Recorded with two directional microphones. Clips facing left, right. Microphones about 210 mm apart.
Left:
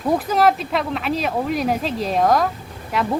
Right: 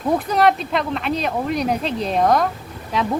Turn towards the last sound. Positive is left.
turn(degrees=0)  # may be behind; listen again after turning